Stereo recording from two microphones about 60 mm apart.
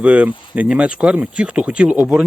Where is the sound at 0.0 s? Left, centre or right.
Centre.